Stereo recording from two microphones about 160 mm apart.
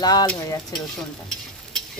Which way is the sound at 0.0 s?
25° left (ahead or behind).